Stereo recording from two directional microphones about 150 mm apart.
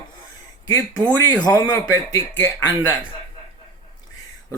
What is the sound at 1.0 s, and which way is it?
Speech, 30° left (ahead or behind).